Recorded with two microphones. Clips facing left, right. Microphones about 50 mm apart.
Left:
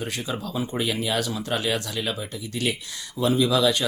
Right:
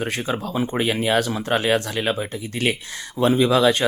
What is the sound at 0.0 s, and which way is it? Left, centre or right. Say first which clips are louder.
A man's voice: right 5 dB; right.